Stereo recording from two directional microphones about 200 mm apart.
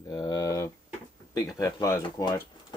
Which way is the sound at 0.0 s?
20° left (ahead or behind).